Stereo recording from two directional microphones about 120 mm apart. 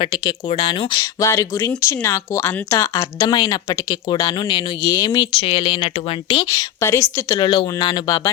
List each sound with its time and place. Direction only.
0.0 s speech: 45° left (ahead or behind)
1.2 s speech: 25° left (ahead or behind)
5.4 s speech: 50° left (ahead or behind)
6.5 s speech: 25° left (ahead or behind)